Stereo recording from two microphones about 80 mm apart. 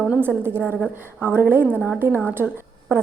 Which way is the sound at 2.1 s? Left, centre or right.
Left.